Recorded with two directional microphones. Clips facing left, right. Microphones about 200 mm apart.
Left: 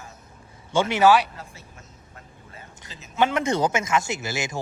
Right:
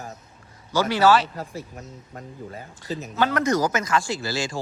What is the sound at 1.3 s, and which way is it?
Speech, 40° right (ahead or behind).